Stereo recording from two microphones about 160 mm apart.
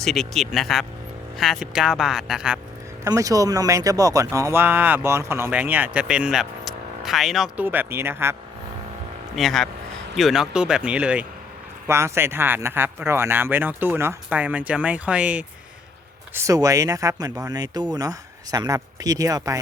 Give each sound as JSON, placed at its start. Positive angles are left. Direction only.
{"t": 0.0, "sound": "speech", "side_deg": 0}
{"t": 3.0, "sound": "speech", "side_deg": -20}
{"t": 9.3, "sound": "speech", "side_deg": 0}
{"t": 16.3, "sound": "speech", "side_deg": -20}